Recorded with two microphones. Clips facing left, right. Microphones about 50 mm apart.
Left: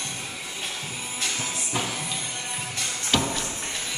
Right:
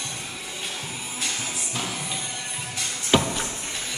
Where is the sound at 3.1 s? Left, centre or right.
Centre.